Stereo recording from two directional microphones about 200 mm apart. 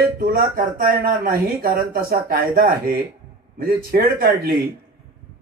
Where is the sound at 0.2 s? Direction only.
45° right (ahead or behind).